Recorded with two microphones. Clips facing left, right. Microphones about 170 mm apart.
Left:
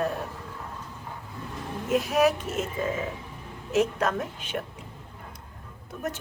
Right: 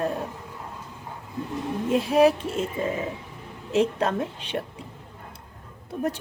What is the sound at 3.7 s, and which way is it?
Speech, 30° right (ahead or behind).